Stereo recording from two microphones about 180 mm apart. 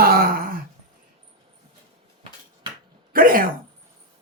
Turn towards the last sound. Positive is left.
turn(degrees=-50)  # may be behind; listen again after turning